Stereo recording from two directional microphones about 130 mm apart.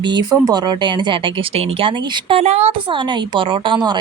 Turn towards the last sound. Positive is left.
turn(degrees=-35)  # may be behind; listen again after turning